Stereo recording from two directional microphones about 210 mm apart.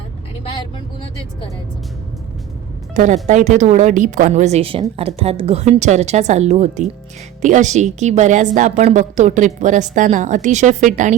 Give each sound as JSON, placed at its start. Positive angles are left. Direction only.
{"t": 2.9, "sound": "a woman's voice", "side_deg": -35}